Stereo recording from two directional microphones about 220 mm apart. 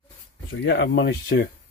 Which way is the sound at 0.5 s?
50° left (ahead or behind).